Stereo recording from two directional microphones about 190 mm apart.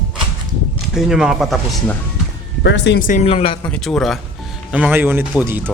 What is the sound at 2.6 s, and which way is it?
Speech, 65° left (ahead or behind).